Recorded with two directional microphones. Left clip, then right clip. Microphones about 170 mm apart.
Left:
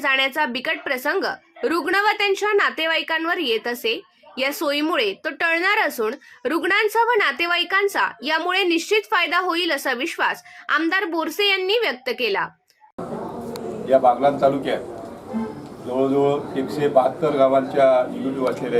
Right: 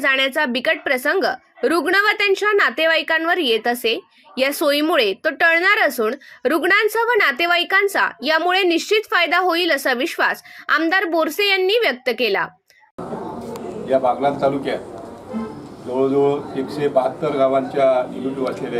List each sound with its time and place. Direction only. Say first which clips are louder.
0.0 s a woman's voice: right 2 dB; 25° right (ahead or behind)
13.5 s a man's voice: left 1 dB; centre (ahead or behind)
15.9 s a man's voice: right 2 dB; centre (ahead or behind)